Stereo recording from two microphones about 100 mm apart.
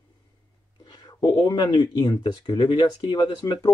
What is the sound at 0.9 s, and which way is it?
Speech, 40° left (ahead or behind).